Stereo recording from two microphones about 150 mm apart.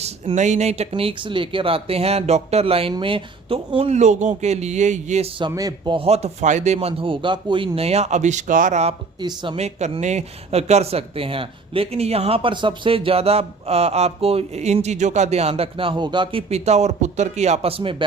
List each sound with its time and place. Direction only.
0.0 s a man's voice: 50° right (ahead or behind)
5.5 s speech: 25° right (ahead or behind); by 6.7 s 50° right (ahead or behind)
6.7 s a man's voice: 35° right (ahead or behind)
9.2 s speech: 30° right (ahead or behind)
9.6 s a man's voice: 45° right (ahead or behind)